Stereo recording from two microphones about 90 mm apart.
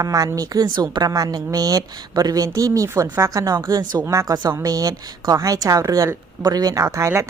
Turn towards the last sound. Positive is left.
turn(degrees=-35)  # may be behind; listen again after turning